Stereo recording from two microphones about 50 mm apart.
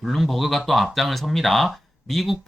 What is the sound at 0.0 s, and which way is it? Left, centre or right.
Speech, centre.